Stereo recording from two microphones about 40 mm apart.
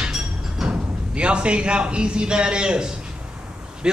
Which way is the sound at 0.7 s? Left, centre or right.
Right.